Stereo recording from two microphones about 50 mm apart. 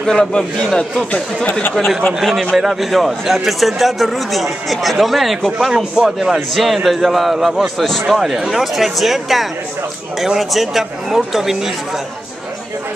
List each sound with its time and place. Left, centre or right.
0.0 s a man's voice: centre
2.1 s a man's voice: centre
5.7 s a man's voice: centre
7.7 s a man's voice: centre
8.1 s a man's voice: centre